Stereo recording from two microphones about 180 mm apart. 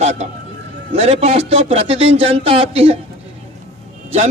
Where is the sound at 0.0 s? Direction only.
40° right (ahead or behind).